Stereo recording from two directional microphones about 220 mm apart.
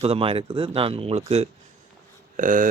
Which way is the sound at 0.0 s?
25° right (ahead or behind).